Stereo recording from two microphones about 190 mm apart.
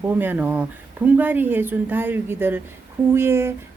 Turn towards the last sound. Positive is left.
turn(degrees=-15)  # may be behind; listen again after turning